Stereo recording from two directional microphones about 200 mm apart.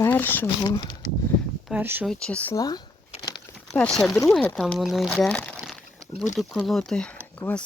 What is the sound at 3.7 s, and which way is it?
Speech, 5° left (ahead or behind).